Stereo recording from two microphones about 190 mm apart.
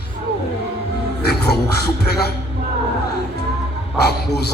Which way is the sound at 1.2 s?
60° left (ahead or behind).